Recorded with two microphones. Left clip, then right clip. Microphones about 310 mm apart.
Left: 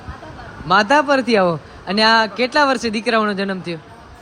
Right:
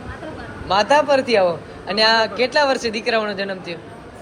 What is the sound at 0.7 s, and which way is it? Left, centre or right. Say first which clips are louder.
A man's voice: left 1 dB; left.